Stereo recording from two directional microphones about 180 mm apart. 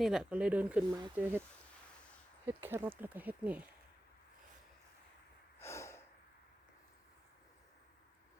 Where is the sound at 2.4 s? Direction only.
15° right (ahead or behind).